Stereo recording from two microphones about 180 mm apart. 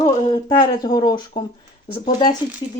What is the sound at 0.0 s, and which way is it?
Speech, 30° left (ahead or behind).